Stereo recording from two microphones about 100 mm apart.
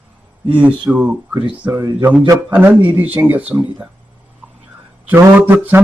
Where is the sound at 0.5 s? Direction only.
15° right (ahead or behind).